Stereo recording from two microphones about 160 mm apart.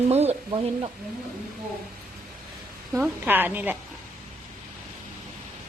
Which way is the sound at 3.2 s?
10° right (ahead or behind).